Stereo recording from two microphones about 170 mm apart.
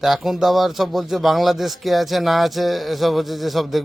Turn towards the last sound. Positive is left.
turn(degrees=0)  # may be behind; listen again after turning